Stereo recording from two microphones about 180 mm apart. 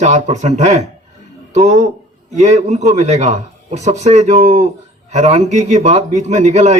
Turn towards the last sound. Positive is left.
turn(degrees=-40)  # may be behind; listen again after turning